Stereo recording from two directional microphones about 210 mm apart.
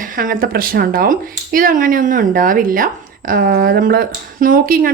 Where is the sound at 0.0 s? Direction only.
40° right (ahead or behind).